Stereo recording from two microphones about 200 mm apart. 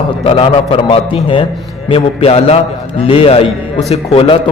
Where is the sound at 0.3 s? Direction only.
30° left (ahead or behind).